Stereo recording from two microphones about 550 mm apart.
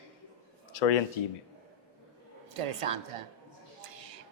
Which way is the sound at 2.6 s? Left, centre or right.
Right.